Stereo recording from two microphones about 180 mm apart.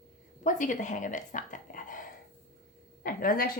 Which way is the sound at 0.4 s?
45° left (ahead or behind).